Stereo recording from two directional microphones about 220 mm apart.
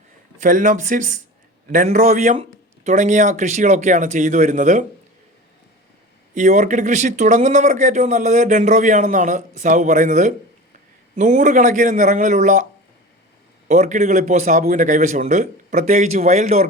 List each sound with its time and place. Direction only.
0.3 s speech: 35° right (ahead or behind)
6.3 s speech: 35° right (ahead or behind)
13.7 s speech: 30° right (ahead or behind)